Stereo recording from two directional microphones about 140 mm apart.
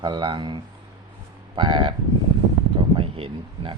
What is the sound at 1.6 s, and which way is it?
Speech, 35° right (ahead or behind).